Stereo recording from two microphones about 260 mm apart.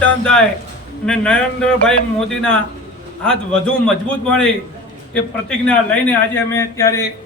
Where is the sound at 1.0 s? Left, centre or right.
Centre.